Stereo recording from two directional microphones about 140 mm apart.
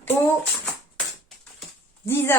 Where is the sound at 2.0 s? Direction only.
15° left (ahead or behind).